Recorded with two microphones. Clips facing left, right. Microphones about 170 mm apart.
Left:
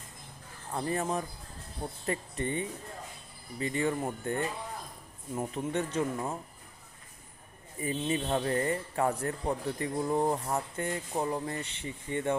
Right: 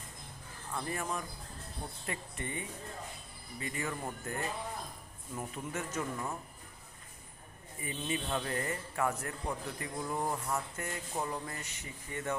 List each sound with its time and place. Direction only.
0.7 s speech: 30° left (ahead or behind)
7.8 s speech: 35° left (ahead or behind)